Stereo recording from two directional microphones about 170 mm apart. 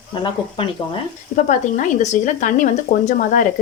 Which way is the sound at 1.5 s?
45° left (ahead or behind).